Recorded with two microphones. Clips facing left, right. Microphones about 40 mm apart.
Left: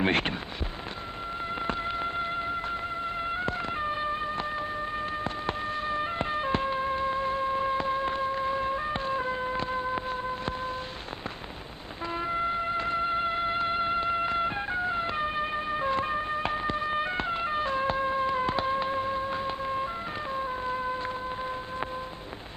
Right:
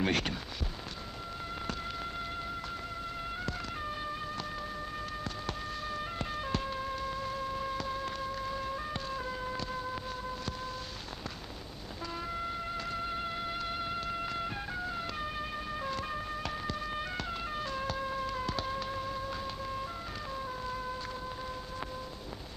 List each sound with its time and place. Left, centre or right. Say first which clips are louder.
0.0 s fireworks: left 5 dB; left
1.6 s a sound: left 9 dB; left
3.2 s music: left 8 dB; left
12.1 s music: left 9 dB; left